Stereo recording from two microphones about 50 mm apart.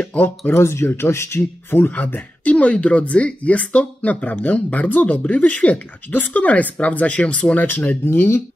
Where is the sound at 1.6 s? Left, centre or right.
Left.